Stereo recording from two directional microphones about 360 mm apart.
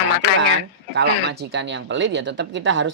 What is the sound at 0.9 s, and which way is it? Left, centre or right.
Speech, right.